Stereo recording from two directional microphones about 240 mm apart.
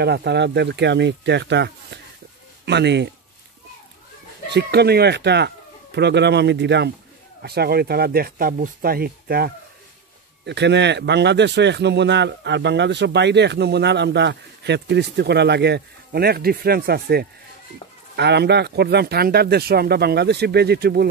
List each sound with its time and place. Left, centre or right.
0.0 s a man's voice: right
4.5 s a man's voice: right